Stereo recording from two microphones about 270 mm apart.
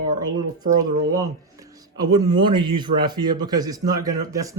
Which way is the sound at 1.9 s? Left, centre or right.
Centre.